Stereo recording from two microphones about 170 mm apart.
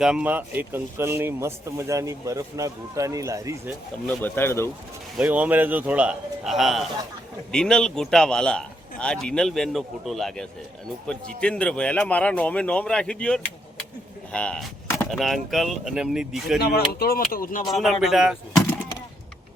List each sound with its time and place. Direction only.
0.0 s speech: 5° right (ahead or behind)
4.0 s speech: 10° left (ahead or behind)
5.1 s a man's voice: 10° right (ahead or behind)
16.6 s speech: 65° left (ahead or behind)
17.7 s a man's voice: centre (ahead or behind)